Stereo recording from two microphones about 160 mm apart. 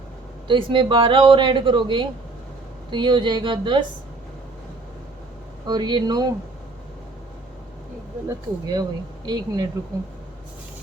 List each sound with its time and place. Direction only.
0.4 s a man's voice: 30° right (ahead or behind)
5.6 s speech: 30° right (ahead or behind)
8.3 s speech: 25° right (ahead or behind)